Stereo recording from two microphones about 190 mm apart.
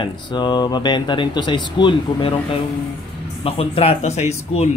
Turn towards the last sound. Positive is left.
turn(degrees=35)  # may be behind; listen again after turning